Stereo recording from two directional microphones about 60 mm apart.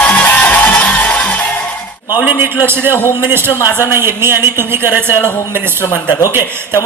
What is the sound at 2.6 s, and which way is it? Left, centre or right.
A woman's voice, right.